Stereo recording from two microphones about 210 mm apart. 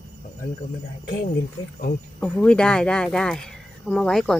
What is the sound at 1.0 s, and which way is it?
Speech, 40° left (ahead or behind).